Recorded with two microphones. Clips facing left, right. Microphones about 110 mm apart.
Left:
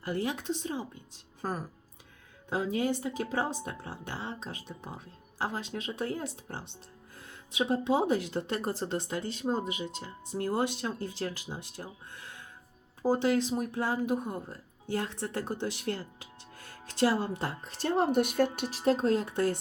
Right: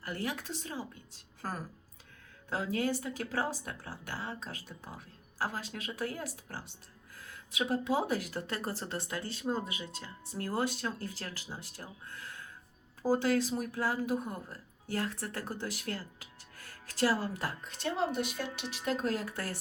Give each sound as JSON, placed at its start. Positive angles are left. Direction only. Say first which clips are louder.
{"t": 0.0, "sound": "speech", "louder": "left 5 dB", "side_deg": 20}